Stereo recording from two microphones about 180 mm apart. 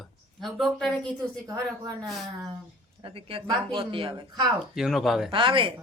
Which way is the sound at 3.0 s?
30° right (ahead or behind).